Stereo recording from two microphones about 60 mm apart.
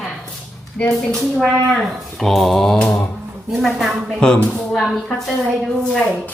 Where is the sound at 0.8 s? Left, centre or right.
Centre.